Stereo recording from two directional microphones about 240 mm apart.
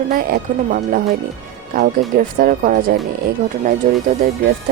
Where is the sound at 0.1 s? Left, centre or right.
Right.